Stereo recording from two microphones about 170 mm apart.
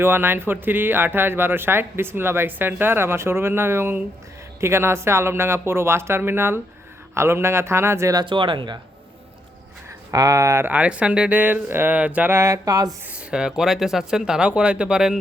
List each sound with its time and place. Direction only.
0.0 s speech: 15° right (ahead or behind)
10.1 s speech: 20° right (ahead or behind)
13.1 s speech: 5° right (ahead or behind)